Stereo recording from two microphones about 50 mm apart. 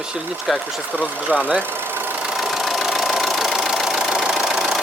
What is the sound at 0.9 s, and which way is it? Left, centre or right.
Speech, right.